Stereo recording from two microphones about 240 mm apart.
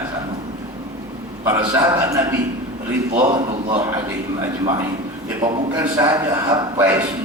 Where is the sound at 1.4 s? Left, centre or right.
Centre.